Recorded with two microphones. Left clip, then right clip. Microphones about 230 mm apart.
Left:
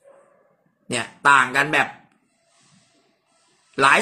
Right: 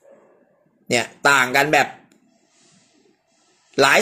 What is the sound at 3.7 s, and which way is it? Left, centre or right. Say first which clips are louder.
Speech: right 1 dB; centre.